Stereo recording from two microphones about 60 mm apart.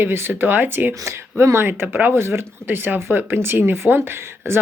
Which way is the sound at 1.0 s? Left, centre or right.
Right.